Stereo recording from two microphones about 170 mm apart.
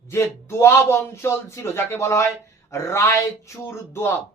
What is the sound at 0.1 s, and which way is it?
Speech, 15° left (ahead or behind).